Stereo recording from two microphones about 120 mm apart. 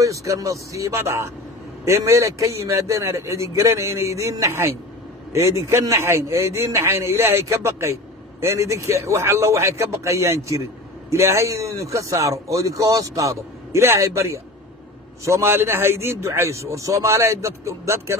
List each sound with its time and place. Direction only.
0.0 s a man's voice: 25° right (ahead or behind)